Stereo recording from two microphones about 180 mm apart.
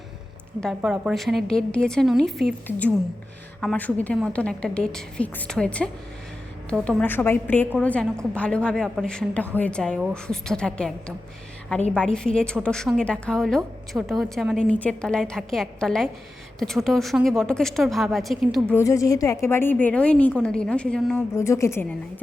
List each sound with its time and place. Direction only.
0.6 s a woman's voice: centre (ahead or behind)
11.9 s a woman's voice: 5° left (ahead or behind)
18.7 s a woman's voice: 15° left (ahead or behind)
21.3 s a woman's voice: 15° left (ahead or behind)